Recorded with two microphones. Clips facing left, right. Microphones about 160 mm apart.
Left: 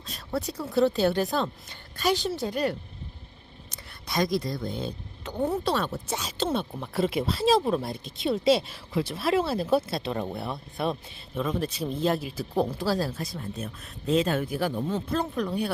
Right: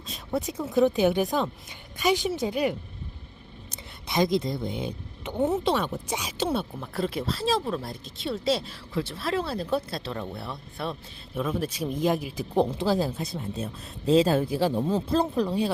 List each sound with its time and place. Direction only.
0.3 s speech: 20° right (ahead or behind)
6.9 s speech: 10° left (ahead or behind)
11.3 s speech: 10° right (ahead or behind)
14.0 s speech: 30° right (ahead or behind)